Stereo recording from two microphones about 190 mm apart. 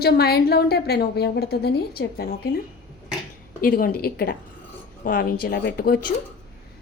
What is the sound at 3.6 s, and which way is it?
A woman's voice, 50° left (ahead or behind).